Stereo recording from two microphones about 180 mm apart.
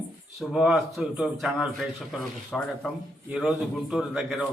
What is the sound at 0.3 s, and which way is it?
A man's voice, centre (ahead or behind).